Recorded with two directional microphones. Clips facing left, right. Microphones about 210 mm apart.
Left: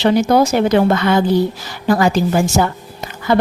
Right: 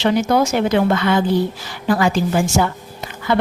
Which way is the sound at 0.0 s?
35° left (ahead or behind).